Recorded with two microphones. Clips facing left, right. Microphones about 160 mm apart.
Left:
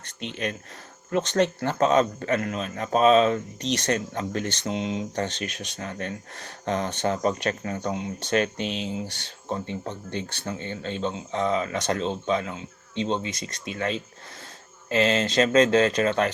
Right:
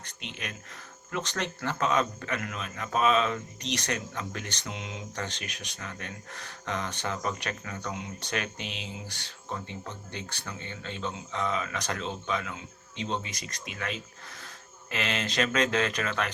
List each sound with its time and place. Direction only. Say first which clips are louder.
0.2 s a man's voice: left 10 dB; 35° left (ahead or behind)